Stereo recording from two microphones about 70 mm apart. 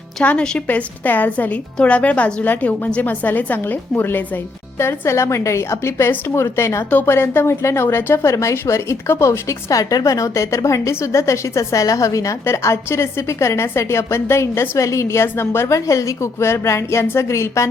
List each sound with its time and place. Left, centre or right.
0.2 s a woman's voice: centre
0.7 s a woman's voice: left
4.8 s a woman's voice: left
8.3 s a woman's voice: left